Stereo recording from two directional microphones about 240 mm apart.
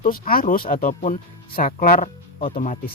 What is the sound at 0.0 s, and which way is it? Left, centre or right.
Speech, left.